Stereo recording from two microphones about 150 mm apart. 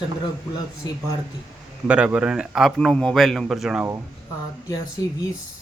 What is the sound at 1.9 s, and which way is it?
A man's voice, 5° right (ahead or behind).